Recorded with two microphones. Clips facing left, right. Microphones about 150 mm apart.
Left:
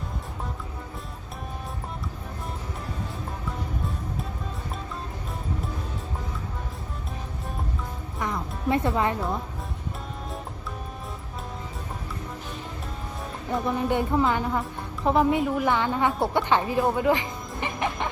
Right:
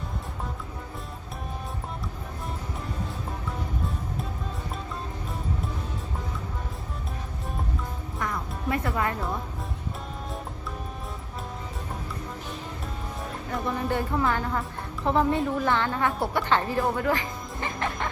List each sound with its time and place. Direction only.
8.2 s music: 25° left (ahead or behind)
13.5 s a woman's voice: 20° left (ahead or behind)